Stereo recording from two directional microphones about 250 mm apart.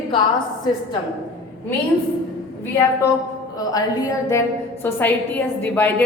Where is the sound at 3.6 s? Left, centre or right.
Centre.